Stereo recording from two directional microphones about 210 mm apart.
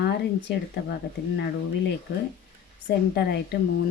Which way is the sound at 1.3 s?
50° left (ahead or behind).